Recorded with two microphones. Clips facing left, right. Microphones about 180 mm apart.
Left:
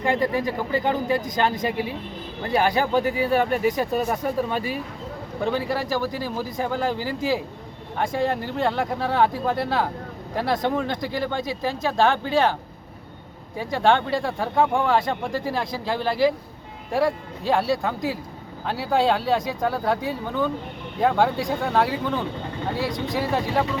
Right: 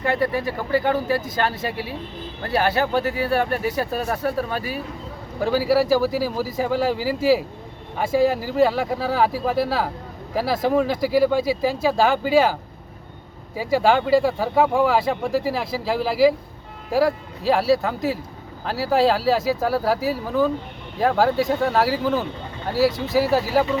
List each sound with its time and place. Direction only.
0.7 s speech: 20° left (ahead or behind)
2.5 s speech: 15° left (ahead or behind)
3.5 s speech: 10° right (ahead or behind)
4.1 s speech: 15° left (ahead or behind)
5.4 s speech: 5° right (ahead or behind)
13.6 s speech: 5° right (ahead or behind)